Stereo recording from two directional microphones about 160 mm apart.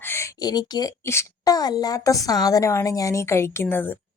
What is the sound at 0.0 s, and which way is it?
A woman's voice, 15° left (ahead or behind).